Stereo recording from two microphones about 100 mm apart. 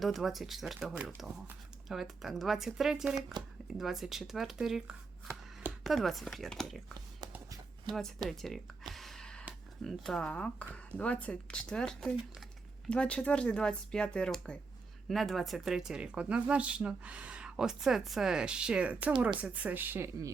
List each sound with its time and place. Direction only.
0.0 s speech: centre (ahead or behind)
7.9 s speech: 5° left (ahead or behind)
8.9 s gasp: centre (ahead or behind)
9.8 s speech: 5° left (ahead or behind); by 20.1 s 20° right (ahead or behind)